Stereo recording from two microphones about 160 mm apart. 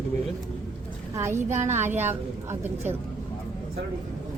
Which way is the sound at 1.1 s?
15° right (ahead or behind).